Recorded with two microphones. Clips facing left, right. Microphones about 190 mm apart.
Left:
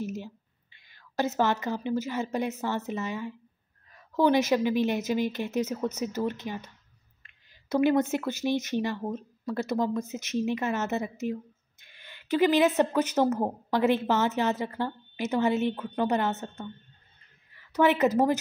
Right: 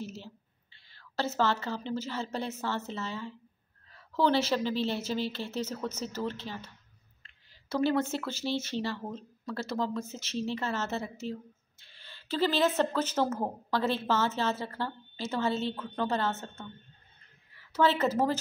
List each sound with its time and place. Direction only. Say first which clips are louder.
0.0 s a sound: left 6 dB; 15° left (ahead or behind)
0.7 s speech: left 4 dB; 15° left (ahead or behind)
7.7 s speech: left 5 dB; 15° left (ahead or behind)
17.7 s speech: left 4 dB; 15° left (ahead or behind)